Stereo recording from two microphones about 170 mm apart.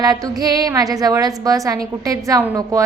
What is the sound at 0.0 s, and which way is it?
A woman's voice, 20° right (ahead or behind).